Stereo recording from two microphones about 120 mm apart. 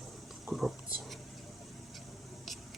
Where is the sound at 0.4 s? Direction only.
Centre (ahead or behind).